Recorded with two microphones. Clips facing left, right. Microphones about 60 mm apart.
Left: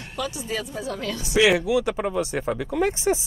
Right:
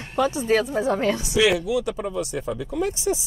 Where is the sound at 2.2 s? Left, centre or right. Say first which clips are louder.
Left 2 dB; left.